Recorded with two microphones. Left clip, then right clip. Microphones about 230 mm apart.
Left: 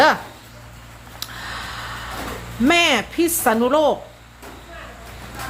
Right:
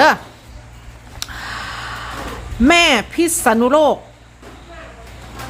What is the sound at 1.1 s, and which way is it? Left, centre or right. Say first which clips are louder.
Gasp: right 3 dB; right.